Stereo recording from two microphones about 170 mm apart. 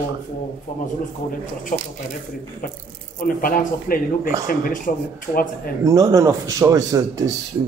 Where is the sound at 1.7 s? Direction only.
45° left (ahead or behind).